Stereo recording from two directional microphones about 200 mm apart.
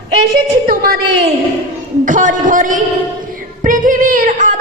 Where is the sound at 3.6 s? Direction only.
40° right (ahead or behind).